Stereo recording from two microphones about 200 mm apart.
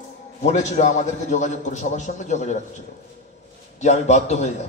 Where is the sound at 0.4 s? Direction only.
35° left (ahead or behind).